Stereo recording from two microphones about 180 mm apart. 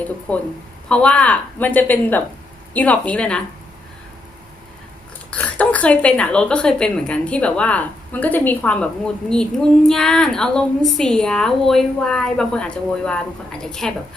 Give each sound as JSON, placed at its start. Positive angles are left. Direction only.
{"t": 0.9, "sound": "a woman's voice", "side_deg": 5}
{"t": 5.3, "sound": "a woman's voice", "side_deg": 10}